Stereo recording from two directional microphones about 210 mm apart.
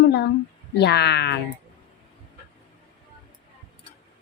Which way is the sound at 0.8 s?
55° left (ahead or behind).